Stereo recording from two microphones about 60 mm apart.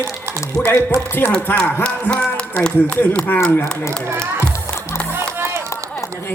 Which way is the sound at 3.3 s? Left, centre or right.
Left.